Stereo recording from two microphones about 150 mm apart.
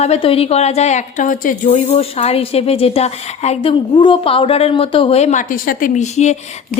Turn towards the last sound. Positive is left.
turn(degrees=50)  # may be behind; listen again after turning